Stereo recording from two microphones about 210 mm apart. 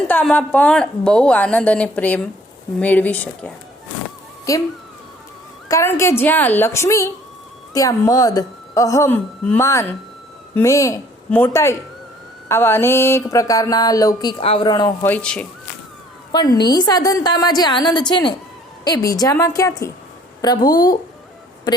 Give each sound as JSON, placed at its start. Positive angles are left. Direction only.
{"t": 0.1, "sound": "a woman's voice", "side_deg": 5}
{"t": 5.6, "sound": "a woman's voice", "side_deg": 15}
{"t": 16.3, "sound": "a woman's voice", "side_deg": 20}